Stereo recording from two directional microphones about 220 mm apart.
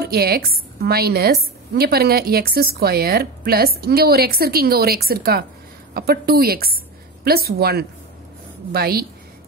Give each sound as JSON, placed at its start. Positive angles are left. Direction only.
{"t": 0.0, "sound": "a woman's voice", "side_deg": -45}